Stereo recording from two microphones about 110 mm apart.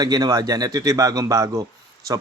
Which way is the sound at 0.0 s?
35° right (ahead or behind).